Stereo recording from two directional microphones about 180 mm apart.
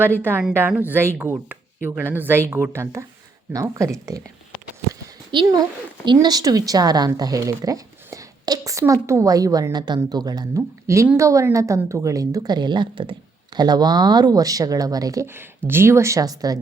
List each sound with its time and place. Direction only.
0.0 s speech: 10° right (ahead or behind)
5.3 s speech: 25° right (ahead or behind)